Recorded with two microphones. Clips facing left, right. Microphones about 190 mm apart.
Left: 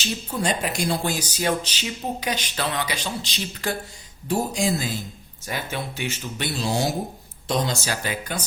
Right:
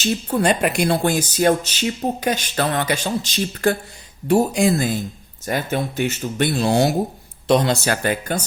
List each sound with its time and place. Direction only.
0.0 s speech: 55° right (ahead or behind)
4.3 s speech: 60° right (ahead or behind)